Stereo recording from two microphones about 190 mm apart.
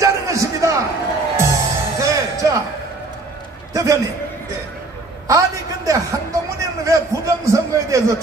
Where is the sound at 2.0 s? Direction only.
15° right (ahead or behind).